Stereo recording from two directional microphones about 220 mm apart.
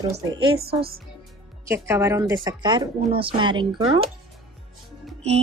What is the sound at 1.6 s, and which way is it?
Speech, 10° right (ahead or behind).